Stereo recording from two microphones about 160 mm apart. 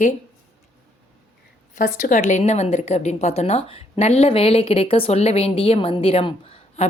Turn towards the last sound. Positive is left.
turn(degrees=35)  # may be behind; listen again after turning